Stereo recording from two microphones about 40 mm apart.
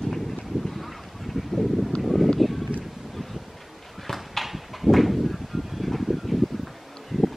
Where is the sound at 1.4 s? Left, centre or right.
Centre.